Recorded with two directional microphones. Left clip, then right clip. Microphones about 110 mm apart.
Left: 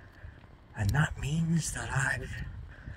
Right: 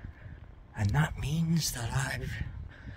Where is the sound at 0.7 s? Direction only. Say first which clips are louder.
Left 1 dB; 30° right (ahead or behind).